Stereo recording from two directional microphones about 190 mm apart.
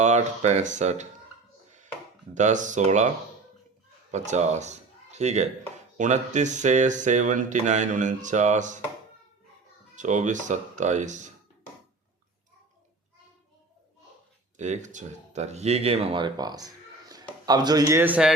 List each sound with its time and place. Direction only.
0.0 s speech: 35° right (ahead or behind)
2.3 s speech: 40° right (ahead or behind)
4.1 s speech: 35° right (ahead or behind)
9.9 s speech: 40° right (ahead or behind)
14.5 s speech: 40° right (ahead or behind); by 18.3 s 5° right (ahead or behind)